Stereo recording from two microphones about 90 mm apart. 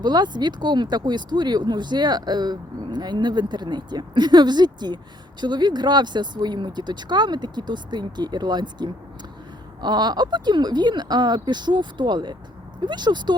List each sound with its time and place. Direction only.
0.0 s speech: 55° right (ahead or behind)